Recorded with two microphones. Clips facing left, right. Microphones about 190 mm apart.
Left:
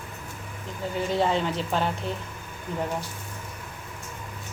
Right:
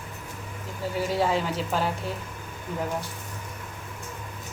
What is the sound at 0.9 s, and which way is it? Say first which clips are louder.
Speech: even; 5° right (ahead or behind).